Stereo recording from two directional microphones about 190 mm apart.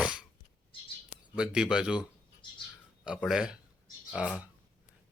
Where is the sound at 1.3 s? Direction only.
5° right (ahead or behind).